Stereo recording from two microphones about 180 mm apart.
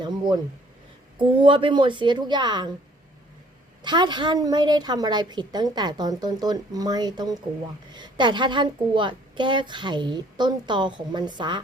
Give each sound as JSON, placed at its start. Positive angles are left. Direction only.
{"t": 0.0, "sound": "a woman's voice", "side_deg": -25}
{"t": 1.4, "sound": "a woman's voice", "side_deg": -30}
{"t": 3.8, "sound": "a woman's voice", "side_deg": -25}